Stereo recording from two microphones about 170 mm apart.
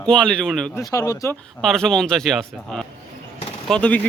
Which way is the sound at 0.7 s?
20° left (ahead or behind).